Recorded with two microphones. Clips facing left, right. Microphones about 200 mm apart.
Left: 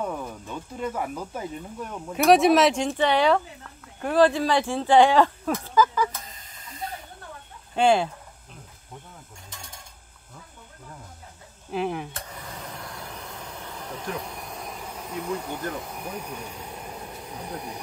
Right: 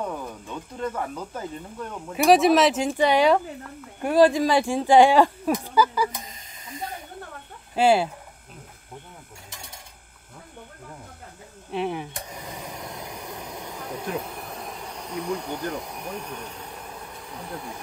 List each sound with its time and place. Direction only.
0.0 s speech: 5° left (ahead or behind); by 6.3 s 15° right (ahead or behind)
7.7 s speech: 5° right (ahead or behind)
11.7 s speech: centre (ahead or behind)
12.1 s vehicle: 15° right (ahead or behind); by 15.6 s 5° left (ahead or behind)
15.7 s speech: centre (ahead or behind); by 17.7 s 20° left (ahead or behind)